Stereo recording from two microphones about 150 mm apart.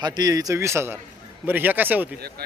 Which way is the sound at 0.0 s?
25° right (ahead or behind).